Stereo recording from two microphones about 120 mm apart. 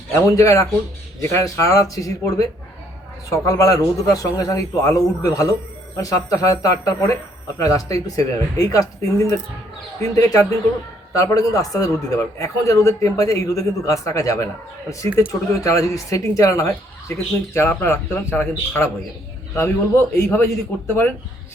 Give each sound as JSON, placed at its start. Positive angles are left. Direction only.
{"t": 0.1, "sound": "speech", "side_deg": 25}
{"t": 10.0, "sound": "speech", "side_deg": 25}